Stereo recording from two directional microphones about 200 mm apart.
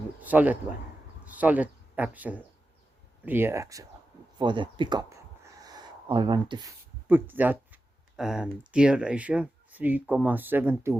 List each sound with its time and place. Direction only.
0.2 s speech: 10° right (ahead or behind)
5.6 s a sound: 20° right (ahead or behind)
7.1 s speech: 10° right (ahead or behind)